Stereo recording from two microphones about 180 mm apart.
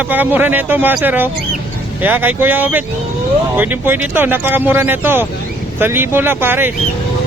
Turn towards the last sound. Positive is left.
turn(degrees=-10)  # may be behind; listen again after turning